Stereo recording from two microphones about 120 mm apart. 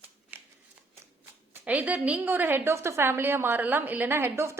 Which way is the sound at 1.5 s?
15° right (ahead or behind).